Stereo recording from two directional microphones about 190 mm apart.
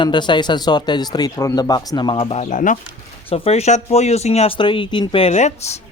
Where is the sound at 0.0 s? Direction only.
25° left (ahead or behind); by 2.7 s 40° left (ahead or behind).